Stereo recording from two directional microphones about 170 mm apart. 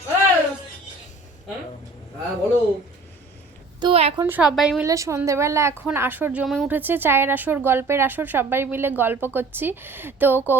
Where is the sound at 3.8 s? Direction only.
35° right (ahead or behind).